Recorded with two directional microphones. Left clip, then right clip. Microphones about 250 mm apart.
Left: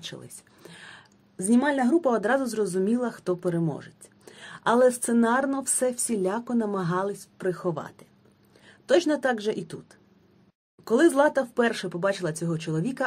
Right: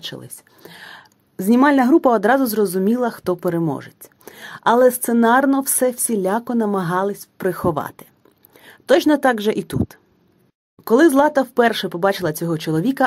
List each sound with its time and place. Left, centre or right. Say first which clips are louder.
0.0 s speech: right 8 dB; right